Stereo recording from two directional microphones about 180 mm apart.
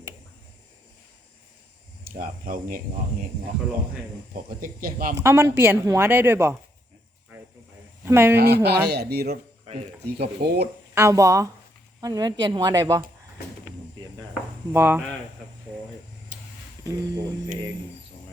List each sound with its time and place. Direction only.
2.0 s speech: 50° right (ahead or behind)
4.4 s speech: 55° right (ahead or behind)
5.1 s a woman's voice: 15° right (ahead or behind)
8.0 s speech: 10° right (ahead or behind)
8.4 s speech: 65° right (ahead or behind)
10.9 s a woman's voice: 15° right (ahead or behind)
14.7 s a woman's voice: 10° right (ahead or behind)
16.8 s speech: 20° right (ahead or behind)